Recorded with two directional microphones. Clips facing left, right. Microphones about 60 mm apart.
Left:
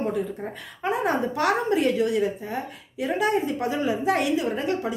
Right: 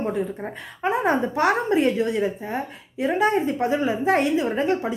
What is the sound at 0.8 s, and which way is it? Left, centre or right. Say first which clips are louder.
A woman's voice: right 3 dB; right.